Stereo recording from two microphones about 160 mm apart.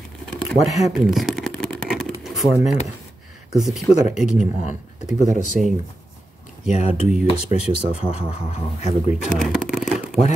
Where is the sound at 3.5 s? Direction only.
5° right (ahead or behind).